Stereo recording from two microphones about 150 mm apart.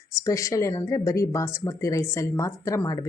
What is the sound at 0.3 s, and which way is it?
Speech, 20° left (ahead or behind).